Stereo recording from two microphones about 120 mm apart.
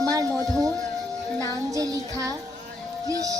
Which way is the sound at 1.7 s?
30° right (ahead or behind).